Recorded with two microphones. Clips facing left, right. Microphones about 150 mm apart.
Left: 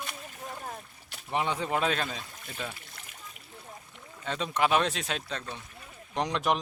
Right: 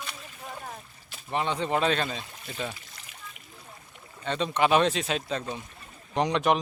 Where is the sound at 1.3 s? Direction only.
10° left (ahead or behind).